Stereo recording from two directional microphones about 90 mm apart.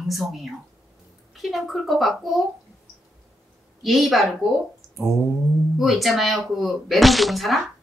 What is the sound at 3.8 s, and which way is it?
Speech, centre (ahead or behind).